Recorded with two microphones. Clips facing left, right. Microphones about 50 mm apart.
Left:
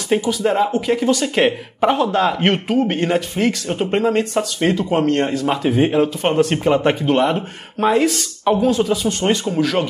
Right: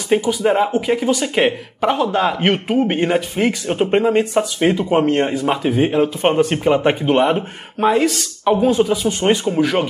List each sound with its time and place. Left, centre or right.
0.1 s speech: centre
2.7 s speech: centre
7.8 s speech: centre
8.5 s speech: centre